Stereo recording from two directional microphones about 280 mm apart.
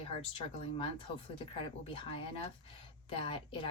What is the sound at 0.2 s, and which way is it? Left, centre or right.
Speech, left.